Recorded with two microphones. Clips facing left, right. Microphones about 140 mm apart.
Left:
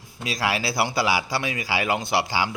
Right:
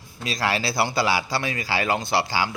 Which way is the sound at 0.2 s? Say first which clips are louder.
Right 1 dB; 10° left (ahead or behind).